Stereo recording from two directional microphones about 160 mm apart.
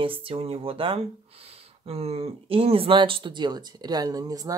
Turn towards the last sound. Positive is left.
turn(degrees=-20)  # may be behind; listen again after turning